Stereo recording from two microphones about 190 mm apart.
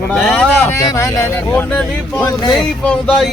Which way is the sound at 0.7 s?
15° left (ahead or behind).